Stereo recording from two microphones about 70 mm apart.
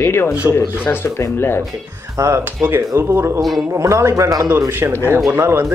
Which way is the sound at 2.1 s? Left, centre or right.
Right.